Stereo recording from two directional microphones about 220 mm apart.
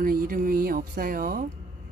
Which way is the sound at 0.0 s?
40° right (ahead or behind).